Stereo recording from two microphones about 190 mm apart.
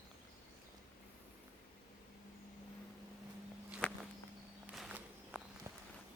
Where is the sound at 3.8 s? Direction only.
5° left (ahead or behind).